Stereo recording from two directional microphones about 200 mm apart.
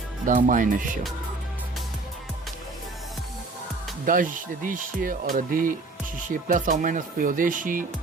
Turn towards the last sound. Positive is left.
turn(degrees=-40)  # may be behind; listen again after turning